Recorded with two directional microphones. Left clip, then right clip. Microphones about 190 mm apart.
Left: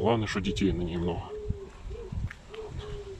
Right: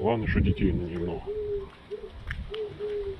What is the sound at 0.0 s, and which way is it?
Speech, 35° left (ahead or behind).